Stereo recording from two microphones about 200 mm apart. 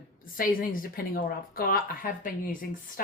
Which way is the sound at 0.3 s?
45° left (ahead or behind).